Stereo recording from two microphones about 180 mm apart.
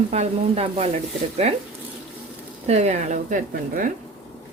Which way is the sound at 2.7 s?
35° right (ahead or behind).